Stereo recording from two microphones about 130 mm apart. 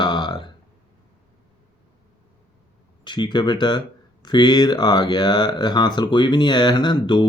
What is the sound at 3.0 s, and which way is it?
Speech, 35° left (ahead or behind).